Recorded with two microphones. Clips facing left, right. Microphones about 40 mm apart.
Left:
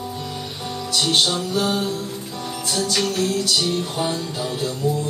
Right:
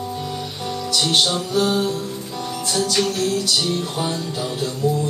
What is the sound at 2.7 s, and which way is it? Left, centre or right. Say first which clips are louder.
Music: right 1 dB; centre.